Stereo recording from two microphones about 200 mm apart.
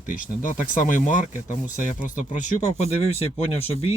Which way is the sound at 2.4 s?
35° left (ahead or behind).